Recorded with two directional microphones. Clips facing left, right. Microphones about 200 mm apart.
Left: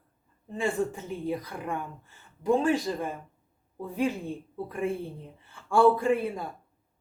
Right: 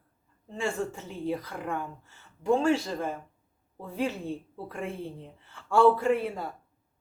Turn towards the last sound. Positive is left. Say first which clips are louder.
# even
turn(degrees=15)  # may be behind; listen again after turning